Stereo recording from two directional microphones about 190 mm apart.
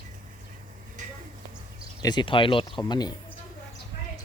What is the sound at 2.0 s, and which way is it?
Speech, 25° left (ahead or behind).